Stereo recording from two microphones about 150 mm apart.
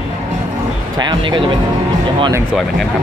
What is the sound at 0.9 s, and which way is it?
Speech, 30° right (ahead or behind).